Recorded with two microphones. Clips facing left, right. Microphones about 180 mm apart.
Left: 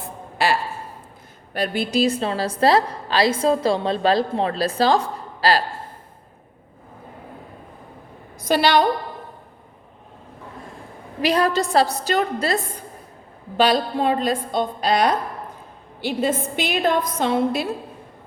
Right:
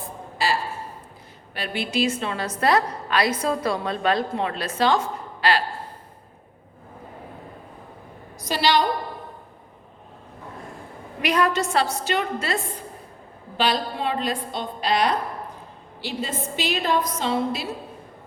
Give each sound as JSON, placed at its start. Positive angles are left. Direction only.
{"t": 0.0, "sound": "a sound", "side_deg": 65}
{"t": 1.5, "sound": "a woman's voice", "side_deg": 40}
{"t": 8.4, "sound": "a woman's voice", "side_deg": 55}
{"t": 11.2, "sound": "a woman's voice", "side_deg": 30}
{"t": 13.6, "sound": "a woman's voice", "side_deg": 45}